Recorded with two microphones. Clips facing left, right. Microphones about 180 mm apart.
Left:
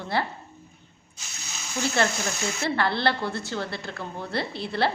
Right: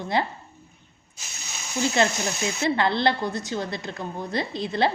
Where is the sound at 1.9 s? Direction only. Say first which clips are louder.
Right 2 dB; 20° right (ahead or behind).